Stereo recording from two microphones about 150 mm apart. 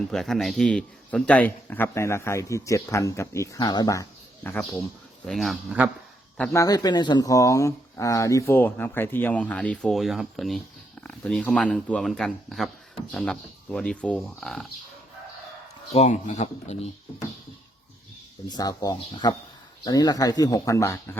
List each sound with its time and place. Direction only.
0.1 s a man's voice: 5° left (ahead or behind); by 4.0 s 25° left (ahead or behind)
4.4 s speech: 10° left (ahead or behind); by 5.9 s 5° right (ahead or behind)
6.5 s speech: 25° left (ahead or behind); by 14.7 s centre (ahead or behind)
15.9 s speech: 45° left (ahead or behind)
18.4 s a man's voice: 25° left (ahead or behind)